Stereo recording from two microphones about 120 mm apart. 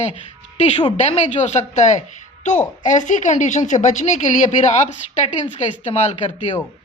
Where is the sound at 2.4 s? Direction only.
90° left.